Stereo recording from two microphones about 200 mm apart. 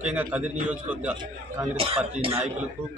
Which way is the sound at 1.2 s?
25° right (ahead or behind).